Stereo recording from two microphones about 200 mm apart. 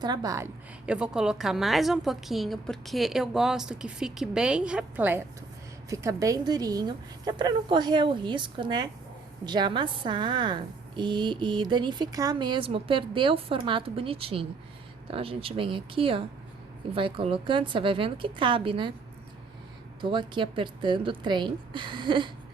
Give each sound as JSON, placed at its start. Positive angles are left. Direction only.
{"t": 0.0, "sound": "a woman's voice", "side_deg": -20}
{"t": 20.0, "sound": "a woman's voice", "side_deg": -25}